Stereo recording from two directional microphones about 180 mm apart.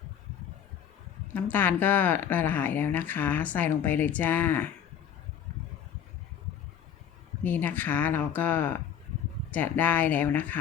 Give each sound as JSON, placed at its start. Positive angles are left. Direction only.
{"t": 1.3, "sound": "speech", "side_deg": 10}
{"t": 7.4, "sound": "speech", "side_deg": 10}